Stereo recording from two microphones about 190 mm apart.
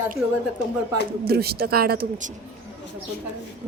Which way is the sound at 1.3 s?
55° right (ahead or behind).